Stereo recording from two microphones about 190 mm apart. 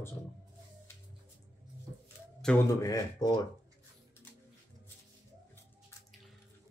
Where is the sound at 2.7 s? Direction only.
15° left (ahead or behind).